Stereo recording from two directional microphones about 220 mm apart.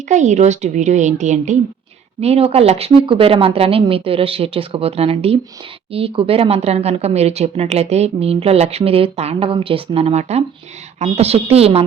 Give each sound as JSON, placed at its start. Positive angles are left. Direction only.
{"t": 0.1, "sound": "a woman's voice", "side_deg": -35}